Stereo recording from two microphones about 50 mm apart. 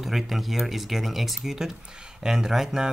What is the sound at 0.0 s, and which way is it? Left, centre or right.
Speech, centre.